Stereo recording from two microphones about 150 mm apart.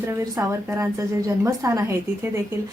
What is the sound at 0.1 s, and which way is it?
A woman's voice, 20° right (ahead or behind).